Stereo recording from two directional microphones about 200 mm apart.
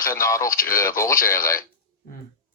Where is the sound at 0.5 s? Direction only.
45° left (ahead or behind).